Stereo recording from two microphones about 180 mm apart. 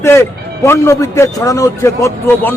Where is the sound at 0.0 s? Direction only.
15° left (ahead or behind).